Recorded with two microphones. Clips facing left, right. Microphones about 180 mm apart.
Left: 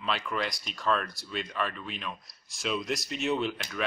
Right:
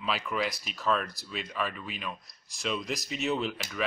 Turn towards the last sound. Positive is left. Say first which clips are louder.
# left 1 dB
turn(degrees=0)  # may be behind; listen again after turning